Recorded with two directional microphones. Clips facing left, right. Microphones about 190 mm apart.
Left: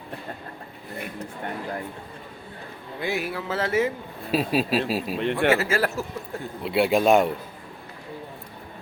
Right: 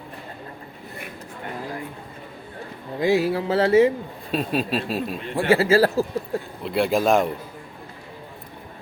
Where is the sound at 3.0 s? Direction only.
35° right (ahead or behind).